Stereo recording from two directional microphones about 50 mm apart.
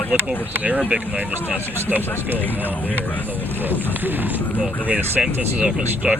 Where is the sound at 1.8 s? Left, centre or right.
Right.